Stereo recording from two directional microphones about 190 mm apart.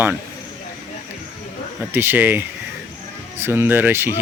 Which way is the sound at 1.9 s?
10° right (ahead or behind).